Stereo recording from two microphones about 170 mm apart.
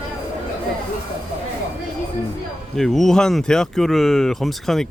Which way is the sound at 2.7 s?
Centre (ahead or behind).